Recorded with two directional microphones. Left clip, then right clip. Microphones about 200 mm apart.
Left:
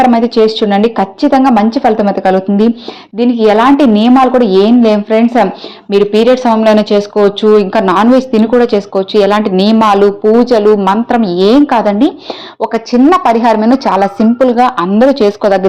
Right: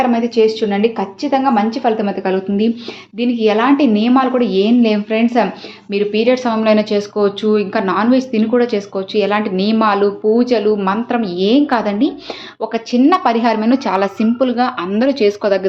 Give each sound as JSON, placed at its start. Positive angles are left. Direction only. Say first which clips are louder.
{"t": 0.1, "sound": "a woman's voice", "louder": "left 5 dB", "side_deg": 40}